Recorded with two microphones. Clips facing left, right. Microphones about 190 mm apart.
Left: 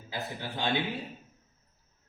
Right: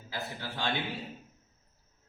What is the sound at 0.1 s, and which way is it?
Speech, 20° left (ahead or behind).